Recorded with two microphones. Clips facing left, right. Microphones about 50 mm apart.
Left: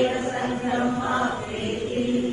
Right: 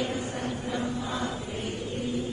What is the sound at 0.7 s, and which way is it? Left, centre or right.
Chant, left.